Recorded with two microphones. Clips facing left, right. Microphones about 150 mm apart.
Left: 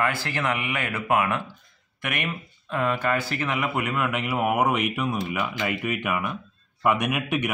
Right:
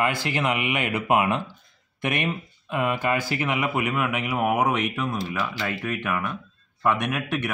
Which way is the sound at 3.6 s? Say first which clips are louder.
Right 1 dB; 5° right (ahead or behind).